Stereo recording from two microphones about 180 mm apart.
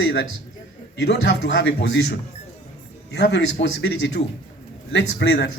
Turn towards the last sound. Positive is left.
turn(degrees=65)  # may be behind; listen again after turning